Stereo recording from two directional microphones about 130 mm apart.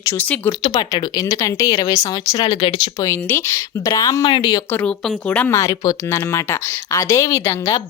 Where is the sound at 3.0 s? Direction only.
20° left (ahead or behind).